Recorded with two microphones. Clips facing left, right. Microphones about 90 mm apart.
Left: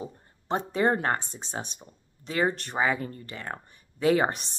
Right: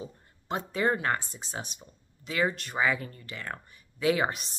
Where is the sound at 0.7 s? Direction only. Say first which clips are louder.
Left 2 dB; 30° left (ahead or behind).